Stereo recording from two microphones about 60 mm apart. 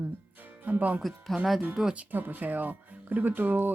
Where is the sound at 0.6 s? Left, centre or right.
Right.